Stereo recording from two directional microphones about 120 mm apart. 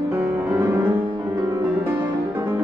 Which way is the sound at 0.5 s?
30° right (ahead or behind).